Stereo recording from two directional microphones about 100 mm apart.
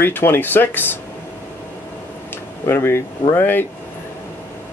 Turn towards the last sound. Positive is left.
turn(degrees=20)  # may be behind; listen again after turning